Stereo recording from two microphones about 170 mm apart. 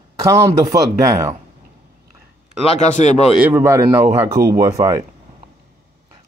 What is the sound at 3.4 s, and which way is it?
A man's voice, 15° right (ahead or behind).